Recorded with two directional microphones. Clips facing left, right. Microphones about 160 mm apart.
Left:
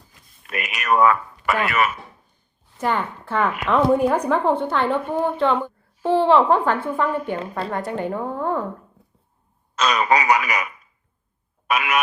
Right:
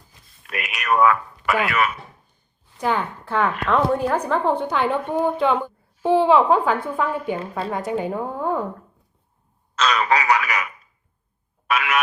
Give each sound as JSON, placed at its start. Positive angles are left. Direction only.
{"t": 0.4, "sound": "a woman's voice", "side_deg": 0}
{"t": 9.7, "sound": "a man's voice", "side_deg": 15}
{"t": 11.7, "sound": "a man's voice", "side_deg": 15}